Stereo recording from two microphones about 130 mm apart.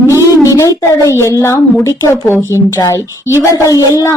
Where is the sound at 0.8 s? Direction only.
20° left (ahead or behind).